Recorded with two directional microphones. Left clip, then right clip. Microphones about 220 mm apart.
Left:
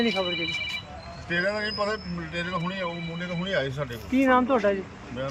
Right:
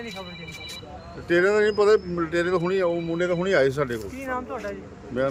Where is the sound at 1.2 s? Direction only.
20° right (ahead or behind).